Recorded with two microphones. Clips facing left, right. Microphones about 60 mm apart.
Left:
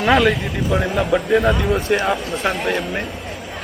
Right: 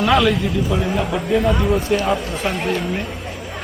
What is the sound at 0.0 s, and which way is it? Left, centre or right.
A man's voice, left.